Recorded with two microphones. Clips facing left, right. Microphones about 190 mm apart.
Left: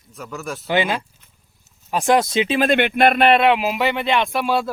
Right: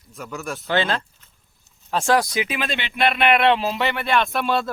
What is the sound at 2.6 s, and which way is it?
Speech, 55° left (ahead or behind).